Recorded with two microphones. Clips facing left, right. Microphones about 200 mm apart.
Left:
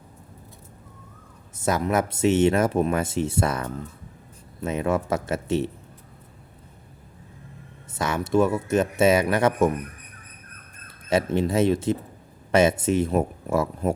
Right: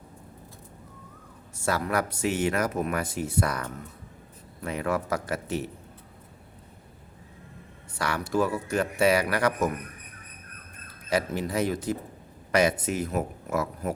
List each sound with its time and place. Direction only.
1.5 s speech: 20° left (ahead or behind)
7.9 s speech: 20° left (ahead or behind)
10.8 s speech: 25° left (ahead or behind)